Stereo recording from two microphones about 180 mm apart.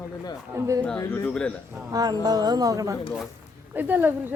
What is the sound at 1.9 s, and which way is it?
Speech, 20° right (ahead or behind).